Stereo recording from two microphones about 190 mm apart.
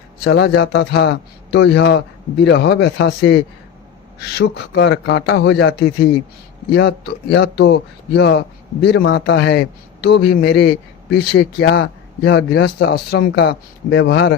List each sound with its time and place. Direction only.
0.3 s a man's voice: 70° left (ahead or behind)